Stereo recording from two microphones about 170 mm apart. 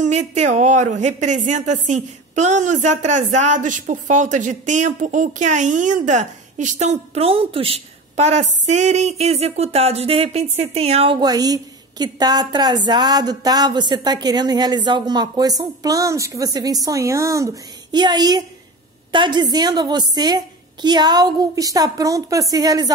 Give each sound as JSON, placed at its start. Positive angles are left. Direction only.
{"t": 0.0, "sound": "a woman's voice", "side_deg": -45}